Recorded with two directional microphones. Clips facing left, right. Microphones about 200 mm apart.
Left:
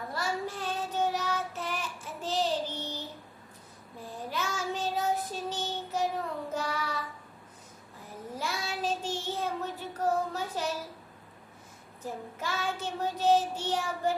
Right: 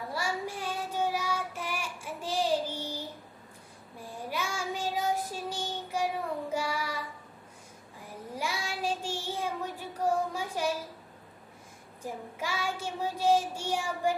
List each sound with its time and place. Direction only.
0.1 s child singing: 10° right (ahead or behind)
8.3 s child singing: 10° right (ahead or behind)
12.0 s child singing: 10° right (ahead or behind)